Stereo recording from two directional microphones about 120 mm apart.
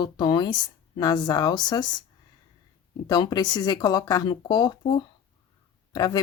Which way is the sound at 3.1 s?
35° left (ahead or behind).